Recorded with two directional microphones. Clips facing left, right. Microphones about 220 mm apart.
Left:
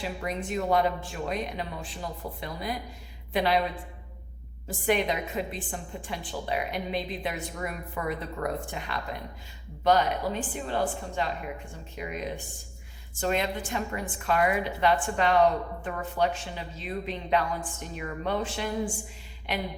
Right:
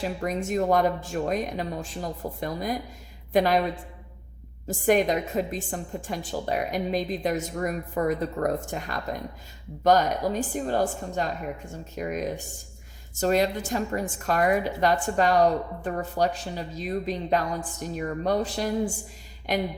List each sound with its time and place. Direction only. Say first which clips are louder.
0.0 s a woman's voice: right 4 dB; 45° right (ahead or behind)
4.9 s a woman's voice: right 5 dB; 45° right (ahead or behind)